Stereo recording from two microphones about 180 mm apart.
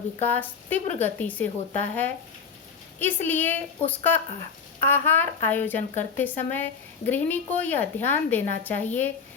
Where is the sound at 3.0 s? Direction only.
10° left (ahead or behind).